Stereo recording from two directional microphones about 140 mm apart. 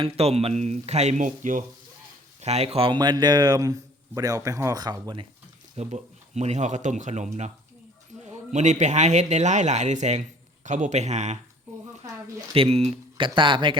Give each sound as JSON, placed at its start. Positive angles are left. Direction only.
{"t": 0.0, "sound": "speech", "side_deg": -45}
{"t": 2.4, "sound": "a man's voice", "side_deg": -50}
{"t": 5.7, "sound": "a man's voice", "side_deg": -55}
{"t": 11.7, "sound": "a sound", "side_deg": -55}
{"t": 12.5, "sound": "speech", "side_deg": -45}